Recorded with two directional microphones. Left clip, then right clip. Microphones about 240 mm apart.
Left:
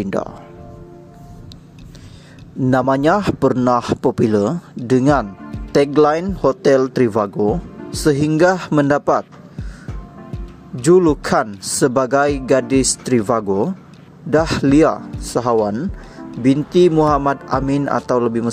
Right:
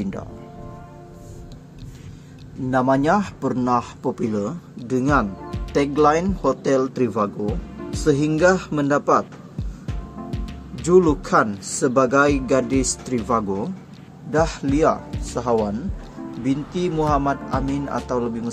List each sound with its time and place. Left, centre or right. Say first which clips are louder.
2.6 s speech: left 4 dB; left
10.8 s speech: left 4 dB; left